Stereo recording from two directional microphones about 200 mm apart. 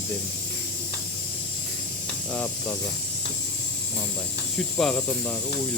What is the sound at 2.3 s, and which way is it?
Speech, 5° left (ahead or behind).